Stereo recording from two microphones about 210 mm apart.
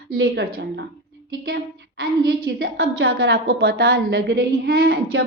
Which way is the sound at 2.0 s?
50° right (ahead or behind).